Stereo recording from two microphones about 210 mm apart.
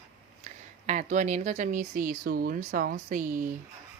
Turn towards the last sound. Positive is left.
turn(degrees=-40)  # may be behind; listen again after turning